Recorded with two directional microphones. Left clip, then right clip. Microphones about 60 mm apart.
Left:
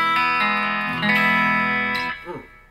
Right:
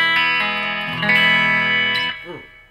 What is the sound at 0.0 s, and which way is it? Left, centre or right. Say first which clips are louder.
Music: right 2 dB; right.